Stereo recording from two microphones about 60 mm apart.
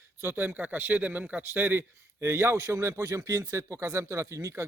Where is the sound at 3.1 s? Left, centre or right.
Right.